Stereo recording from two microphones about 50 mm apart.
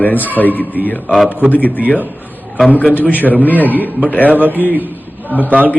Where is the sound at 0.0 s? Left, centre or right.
Left.